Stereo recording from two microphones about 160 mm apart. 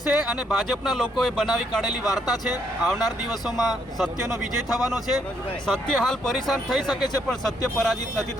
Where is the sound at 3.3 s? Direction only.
Centre (ahead or behind).